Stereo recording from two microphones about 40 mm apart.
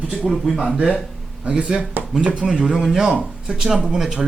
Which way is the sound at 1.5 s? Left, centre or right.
Right.